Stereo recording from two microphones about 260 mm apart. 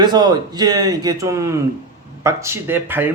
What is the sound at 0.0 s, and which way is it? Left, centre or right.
Speech, centre.